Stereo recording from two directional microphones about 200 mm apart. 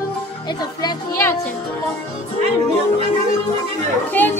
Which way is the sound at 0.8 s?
15° left (ahead or behind).